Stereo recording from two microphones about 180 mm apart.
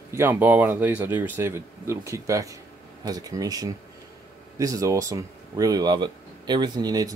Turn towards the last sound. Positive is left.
turn(degrees=-20)  # may be behind; listen again after turning